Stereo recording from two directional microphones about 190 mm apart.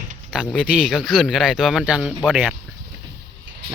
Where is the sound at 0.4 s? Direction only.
5° left (ahead or behind).